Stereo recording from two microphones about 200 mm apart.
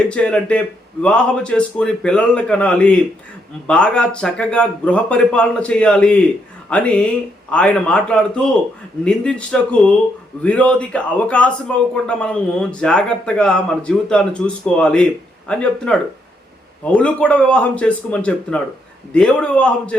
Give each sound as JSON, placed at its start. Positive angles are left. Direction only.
{"t": 0.1, "sound": "a man's voice", "side_deg": 5}